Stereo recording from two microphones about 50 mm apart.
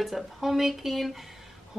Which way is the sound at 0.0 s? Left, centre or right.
Centre.